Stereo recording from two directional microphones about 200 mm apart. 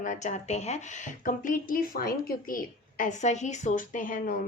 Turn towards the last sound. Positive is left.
turn(degrees=40)  # may be behind; listen again after turning